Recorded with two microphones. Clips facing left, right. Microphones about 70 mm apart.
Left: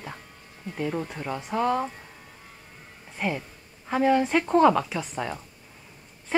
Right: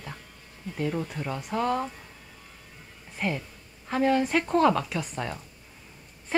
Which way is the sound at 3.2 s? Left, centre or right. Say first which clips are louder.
Left 1 dB; centre.